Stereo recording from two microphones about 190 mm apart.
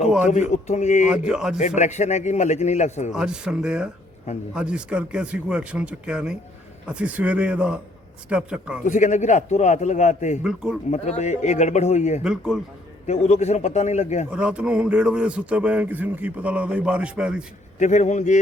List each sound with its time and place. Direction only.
0.3 s a man's voice: 40° left (ahead or behind)
1.3 s speech: 5° right (ahead or behind)
1.5 s a man's voice: 40° left (ahead or behind)
3.1 s a man's voice: 5° right (ahead or behind)
8.8 s a man's voice: 40° left (ahead or behind)
10.4 s speech: 5° right (ahead or behind)
10.9 s a man's voice: 35° left (ahead or behind)
12.2 s speech: 5° right (ahead or behind)
13.1 s a man's voice: 35° left (ahead or behind)
14.3 s a man's voice: 5° right (ahead or behind)
17.7 s a man's voice: 40° left (ahead or behind)